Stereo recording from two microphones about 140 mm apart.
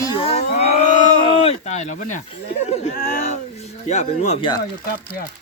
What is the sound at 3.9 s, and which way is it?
Speech, 55° left (ahead or behind).